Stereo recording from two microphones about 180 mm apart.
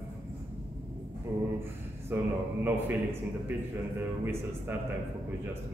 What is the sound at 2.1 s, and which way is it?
A man's voice, 10° right (ahead or behind).